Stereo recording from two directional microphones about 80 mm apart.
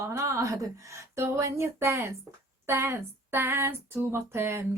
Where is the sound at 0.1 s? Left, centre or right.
Right.